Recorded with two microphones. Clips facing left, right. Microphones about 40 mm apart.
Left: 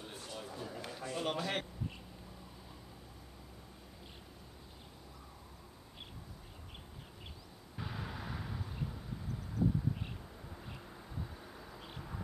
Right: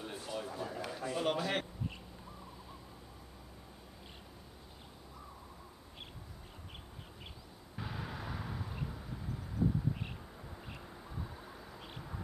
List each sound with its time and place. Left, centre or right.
0.0 s a sound: centre
7.8 s vehicle: centre
10.7 s vehicle: centre